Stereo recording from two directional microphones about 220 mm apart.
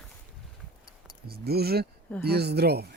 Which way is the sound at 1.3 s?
45° right (ahead or behind).